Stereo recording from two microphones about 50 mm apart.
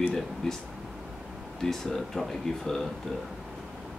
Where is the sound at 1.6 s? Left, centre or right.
Centre.